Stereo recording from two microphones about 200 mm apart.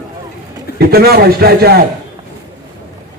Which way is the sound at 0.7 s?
50° right (ahead or behind).